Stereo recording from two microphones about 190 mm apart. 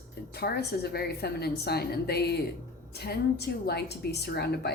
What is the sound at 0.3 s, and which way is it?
A woman's voice, 55° left (ahead or behind).